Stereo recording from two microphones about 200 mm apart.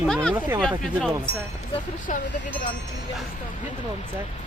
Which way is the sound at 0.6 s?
5° left (ahead or behind).